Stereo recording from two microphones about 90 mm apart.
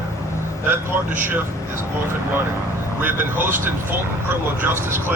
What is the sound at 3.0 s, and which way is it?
A man's voice, 25° right (ahead or behind).